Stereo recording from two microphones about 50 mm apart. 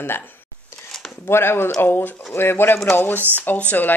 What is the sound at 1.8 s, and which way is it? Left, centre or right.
Speech, left.